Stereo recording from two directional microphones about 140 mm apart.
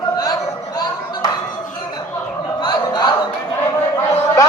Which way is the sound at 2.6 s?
30° left (ahead or behind).